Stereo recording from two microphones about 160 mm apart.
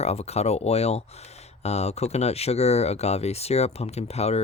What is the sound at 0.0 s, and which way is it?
Speech, 40° left (ahead or behind).